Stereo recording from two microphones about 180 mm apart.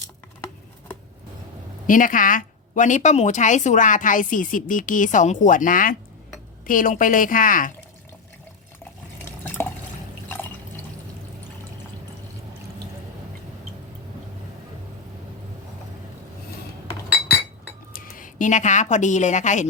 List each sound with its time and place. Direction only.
1.9 s speech: 50° left (ahead or behind)
10.2 s water: 10° left (ahead or behind)
17.9 s a woman's voice: 50° left (ahead or behind)